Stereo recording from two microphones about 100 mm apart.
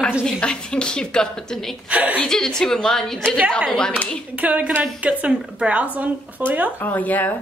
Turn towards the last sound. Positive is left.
turn(degrees=15)  # may be behind; listen again after turning